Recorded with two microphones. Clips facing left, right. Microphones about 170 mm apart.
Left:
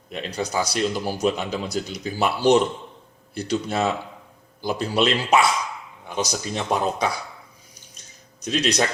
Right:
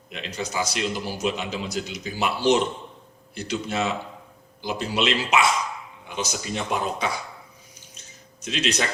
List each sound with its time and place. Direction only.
0.1 s speech: 35° left (ahead or behind)
8.4 s speech: 40° left (ahead or behind)